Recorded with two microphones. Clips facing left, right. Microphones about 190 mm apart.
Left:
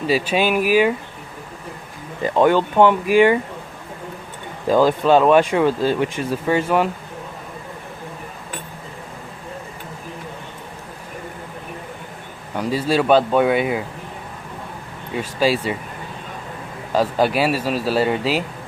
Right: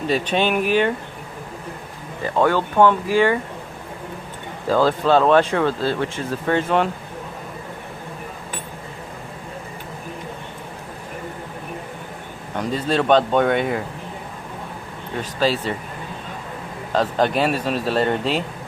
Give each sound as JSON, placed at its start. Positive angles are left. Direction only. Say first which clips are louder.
{"t": 0.1, "sound": "speech", "louder": "left 2 dB", "side_deg": 5}
{"t": 2.2, "sound": "speech", "louder": "left 3 dB", "side_deg": 20}
{"t": 4.6, "sound": "speech", "louder": "left 2 dB", "side_deg": 15}
{"t": 12.5, "sound": "speech", "louder": "left 2 dB", "side_deg": 5}
{"t": 15.1, "sound": "speech", "louder": "left 2 dB", "side_deg": 10}
{"t": 16.9, "sound": "speech", "louder": "left 1 dB", "side_deg": 10}